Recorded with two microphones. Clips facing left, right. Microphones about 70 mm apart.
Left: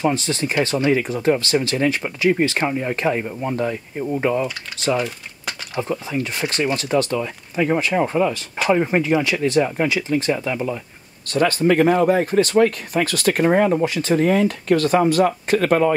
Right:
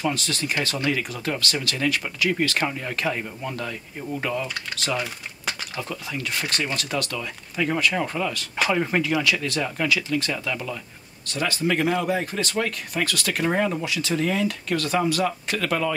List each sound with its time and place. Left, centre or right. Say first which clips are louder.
0.0 s speech: left 6 dB; left
5.8 s speech: left 8 dB; left
11.3 s speech: left 8 dB; left